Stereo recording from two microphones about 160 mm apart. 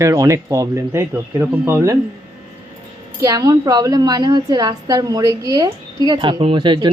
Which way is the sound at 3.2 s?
25° right (ahead or behind).